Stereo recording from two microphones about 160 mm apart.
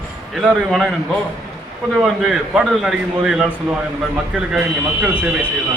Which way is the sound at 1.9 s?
Centre (ahead or behind).